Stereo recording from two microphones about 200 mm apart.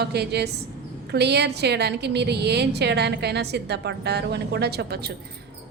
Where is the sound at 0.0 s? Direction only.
55° right (ahead or behind).